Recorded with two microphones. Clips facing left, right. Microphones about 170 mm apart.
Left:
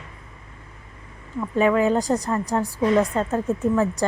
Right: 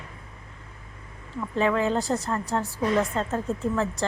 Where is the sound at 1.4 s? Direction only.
10° left (ahead or behind).